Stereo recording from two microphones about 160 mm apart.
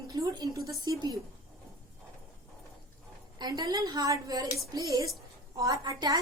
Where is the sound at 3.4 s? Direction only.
25° right (ahead or behind).